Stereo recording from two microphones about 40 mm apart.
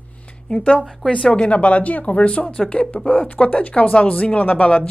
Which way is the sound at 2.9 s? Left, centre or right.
Left.